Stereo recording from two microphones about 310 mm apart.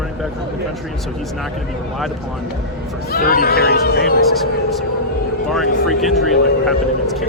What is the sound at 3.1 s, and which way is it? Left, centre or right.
Speech, left.